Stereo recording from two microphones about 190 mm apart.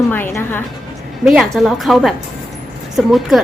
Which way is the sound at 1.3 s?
Centre (ahead or behind).